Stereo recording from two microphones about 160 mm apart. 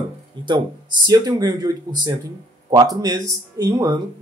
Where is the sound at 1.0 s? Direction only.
25° right (ahead or behind).